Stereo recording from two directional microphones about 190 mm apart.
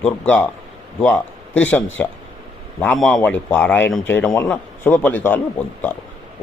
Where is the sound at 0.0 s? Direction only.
10° left (ahead or behind).